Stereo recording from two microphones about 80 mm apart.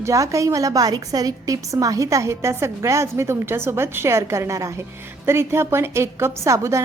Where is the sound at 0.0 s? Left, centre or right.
Right.